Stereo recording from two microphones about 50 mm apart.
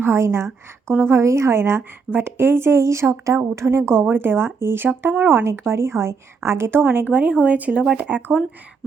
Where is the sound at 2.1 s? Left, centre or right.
Right.